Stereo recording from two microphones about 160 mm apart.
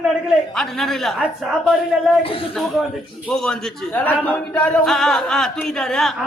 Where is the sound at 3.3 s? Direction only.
5° left (ahead or behind).